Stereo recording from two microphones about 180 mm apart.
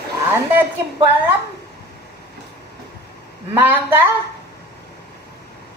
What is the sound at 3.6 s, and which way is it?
Speech, 10° right (ahead or behind).